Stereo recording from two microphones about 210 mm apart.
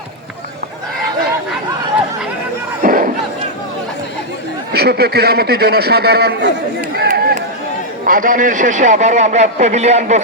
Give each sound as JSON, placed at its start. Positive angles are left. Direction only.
{"t": 2.8, "sound": "crowd", "side_deg": -40}
{"t": 4.7, "sound": "a man's voice", "side_deg": -50}
{"t": 7.1, "sound": "a sound", "side_deg": -35}
{"t": 8.0, "sound": "a man's voice", "side_deg": -40}